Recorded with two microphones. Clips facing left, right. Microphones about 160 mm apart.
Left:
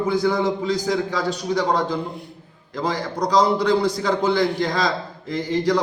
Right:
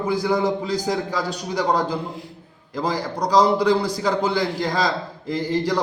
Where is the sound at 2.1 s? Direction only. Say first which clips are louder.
Even; 90° right.